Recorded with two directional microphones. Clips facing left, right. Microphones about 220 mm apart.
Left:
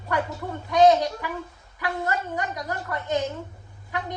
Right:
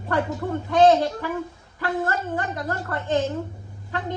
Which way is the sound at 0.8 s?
15° left (ahead or behind).